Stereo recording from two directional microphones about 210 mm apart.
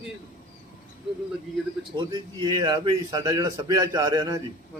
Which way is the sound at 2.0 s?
20° right (ahead or behind).